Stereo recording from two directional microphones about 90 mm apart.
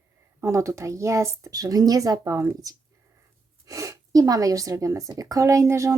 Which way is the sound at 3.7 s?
35° right (ahead or behind).